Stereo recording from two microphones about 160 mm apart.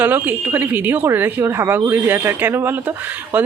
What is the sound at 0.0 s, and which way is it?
Speech, 10° right (ahead or behind).